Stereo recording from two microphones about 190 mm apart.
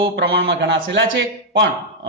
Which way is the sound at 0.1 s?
65° right (ahead or behind).